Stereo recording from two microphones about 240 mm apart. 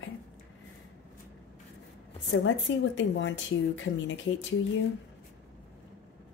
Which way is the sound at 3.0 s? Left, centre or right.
Left.